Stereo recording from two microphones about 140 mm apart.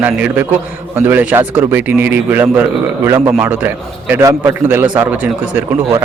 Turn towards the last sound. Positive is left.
turn(degrees=-15)  # may be behind; listen again after turning